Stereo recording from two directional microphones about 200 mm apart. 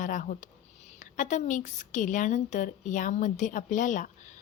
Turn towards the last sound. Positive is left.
turn(degrees=40)  # may be behind; listen again after turning